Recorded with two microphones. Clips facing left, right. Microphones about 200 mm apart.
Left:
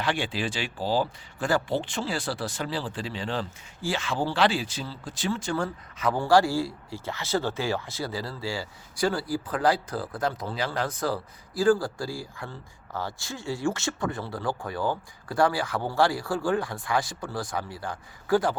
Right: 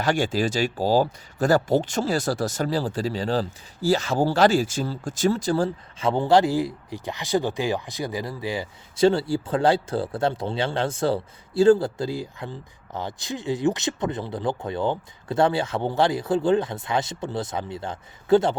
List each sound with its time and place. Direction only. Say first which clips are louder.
0.0 s speech: right 6 dB; 45° right (ahead or behind); by 18.5 s 25° right (ahead or behind)